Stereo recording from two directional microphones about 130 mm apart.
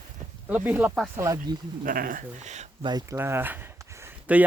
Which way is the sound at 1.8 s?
90° right.